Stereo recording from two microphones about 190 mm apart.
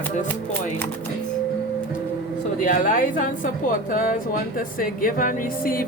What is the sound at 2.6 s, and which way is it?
Speech, 45° left (ahead or behind).